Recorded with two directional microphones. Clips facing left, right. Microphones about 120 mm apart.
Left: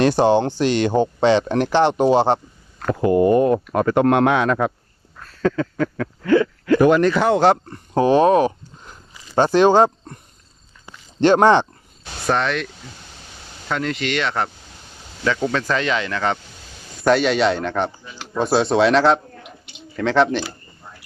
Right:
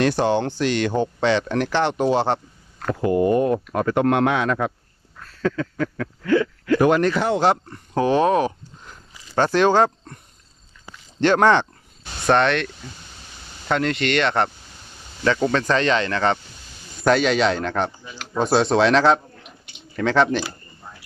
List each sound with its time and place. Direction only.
0.2 s speech: 20° left (ahead or behind)
2.8 s speech: 65° left (ahead or behind)
5.4 s a sound: 45° left (ahead or behind)
7.4 s speech: 35° left (ahead or behind)
11.2 s speech: 25° left (ahead or behind)
12.2 s speech: centre (ahead or behind)